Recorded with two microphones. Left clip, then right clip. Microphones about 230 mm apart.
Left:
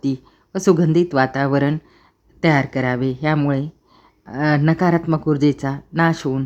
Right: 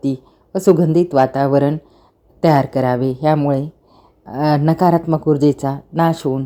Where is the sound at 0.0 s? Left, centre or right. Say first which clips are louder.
Right 2 dB; centre.